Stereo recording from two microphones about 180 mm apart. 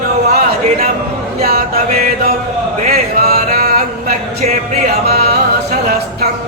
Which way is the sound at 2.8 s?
55° right (ahead or behind).